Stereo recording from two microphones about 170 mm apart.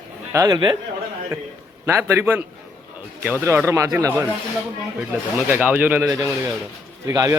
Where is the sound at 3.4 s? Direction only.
15° right (ahead or behind).